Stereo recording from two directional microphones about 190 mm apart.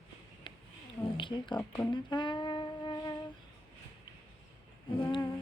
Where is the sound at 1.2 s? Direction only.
25° left (ahead or behind).